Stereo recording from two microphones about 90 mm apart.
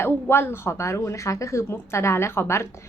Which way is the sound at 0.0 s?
25° left (ahead or behind).